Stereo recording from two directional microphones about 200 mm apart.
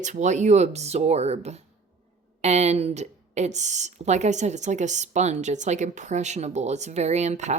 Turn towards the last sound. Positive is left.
turn(degrees=-35)  # may be behind; listen again after turning